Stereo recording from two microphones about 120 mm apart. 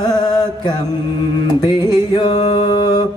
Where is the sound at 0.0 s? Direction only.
35° left (ahead or behind).